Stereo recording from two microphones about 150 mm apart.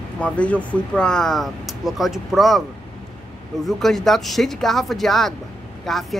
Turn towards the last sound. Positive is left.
turn(degrees=0)  # may be behind; listen again after turning